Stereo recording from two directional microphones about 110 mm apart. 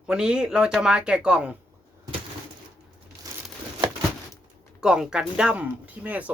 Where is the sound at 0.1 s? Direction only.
10° right (ahead or behind).